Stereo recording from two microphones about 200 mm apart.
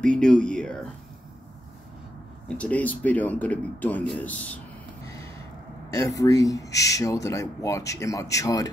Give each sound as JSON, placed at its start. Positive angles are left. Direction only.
{"t": 0.0, "sound": "speech", "side_deg": 5}
{"t": 2.4, "sound": "speech", "side_deg": 5}
{"t": 5.0, "sound": "gasp", "side_deg": 15}
{"t": 5.9, "sound": "speech", "side_deg": 15}